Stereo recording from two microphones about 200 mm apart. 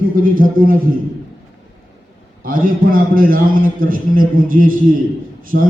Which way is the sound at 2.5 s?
45° right (ahead or behind).